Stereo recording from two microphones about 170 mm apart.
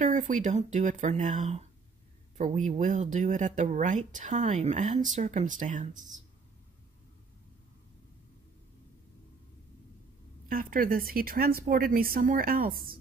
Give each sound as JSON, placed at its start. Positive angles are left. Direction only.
{"t": 0.0, "sound": "speech", "side_deg": -45}
{"t": 10.5, "sound": "speech", "side_deg": -55}